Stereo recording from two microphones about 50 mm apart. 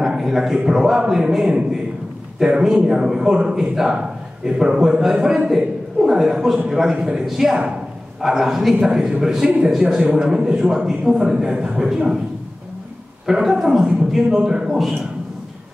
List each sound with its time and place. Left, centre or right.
0.0 s a man's voice: centre
13.3 s a man's voice: centre